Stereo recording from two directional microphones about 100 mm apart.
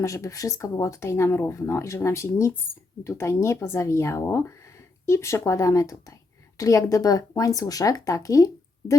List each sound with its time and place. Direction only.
0.0 s speech: 30° left (ahead or behind)